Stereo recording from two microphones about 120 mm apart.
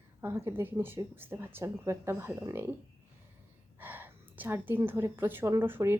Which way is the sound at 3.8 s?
15° right (ahead or behind).